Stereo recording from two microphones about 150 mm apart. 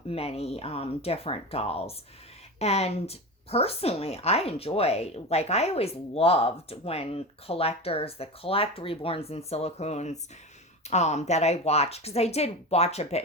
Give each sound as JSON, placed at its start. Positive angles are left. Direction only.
{"t": 0.1, "sound": "a woman's voice", "side_deg": 40}